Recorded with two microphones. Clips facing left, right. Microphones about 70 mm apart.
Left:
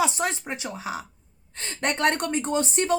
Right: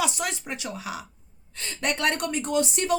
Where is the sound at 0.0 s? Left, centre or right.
Left.